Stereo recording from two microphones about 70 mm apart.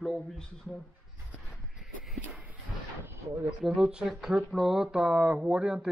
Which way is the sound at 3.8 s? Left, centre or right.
Centre.